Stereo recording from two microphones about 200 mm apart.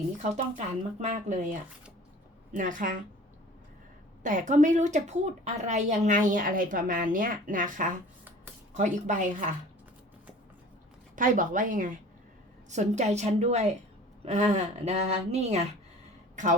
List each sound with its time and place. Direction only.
0.2 s a woman's voice: 40° right (ahead or behind)
2.6 s a woman's voice: 40° right (ahead or behind)
4.2 s a woman's voice: 40° right (ahead or behind)
11.1 s a woman's voice: 40° right (ahead or behind)